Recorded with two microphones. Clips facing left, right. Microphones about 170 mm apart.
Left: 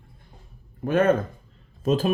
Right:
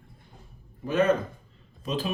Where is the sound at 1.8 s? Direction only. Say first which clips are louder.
Left 8 dB; 45° left (ahead or behind).